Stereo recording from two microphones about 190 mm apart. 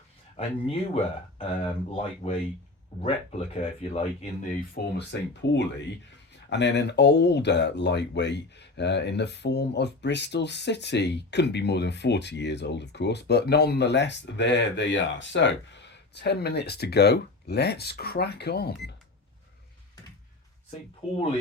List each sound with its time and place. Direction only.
0.3 s speech: 30° left (ahead or behind); by 18.9 s 55° left (ahead or behind)
21.0 s speech: 5° right (ahead or behind)